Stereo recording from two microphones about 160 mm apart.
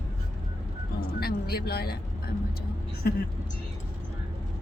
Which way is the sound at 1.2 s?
75° left (ahead or behind).